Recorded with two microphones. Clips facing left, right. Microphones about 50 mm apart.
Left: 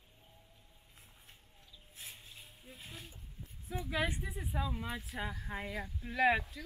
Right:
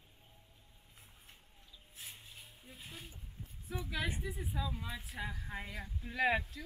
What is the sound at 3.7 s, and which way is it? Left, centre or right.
Speech, left.